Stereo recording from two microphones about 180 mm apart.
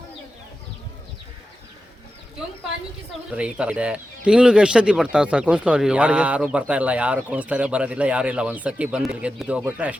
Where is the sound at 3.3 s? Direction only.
5° right (ahead or behind).